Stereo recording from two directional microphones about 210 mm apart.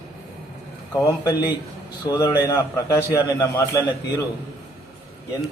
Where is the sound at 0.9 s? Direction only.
15° left (ahead or behind).